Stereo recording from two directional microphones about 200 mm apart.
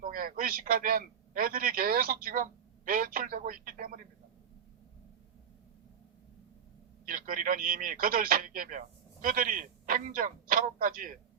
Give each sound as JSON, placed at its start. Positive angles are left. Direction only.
{"t": 0.0, "sound": "a man's voice", "side_deg": -45}
{"t": 7.0, "sound": "a man's voice", "side_deg": -45}